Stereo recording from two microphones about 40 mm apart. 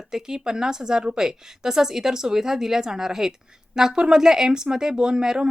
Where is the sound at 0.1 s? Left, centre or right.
Centre.